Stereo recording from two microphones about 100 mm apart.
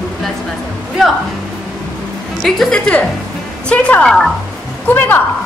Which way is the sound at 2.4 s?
5° left (ahead or behind).